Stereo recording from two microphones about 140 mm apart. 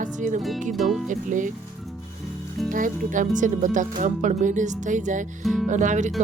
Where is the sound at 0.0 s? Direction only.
65° right (ahead or behind).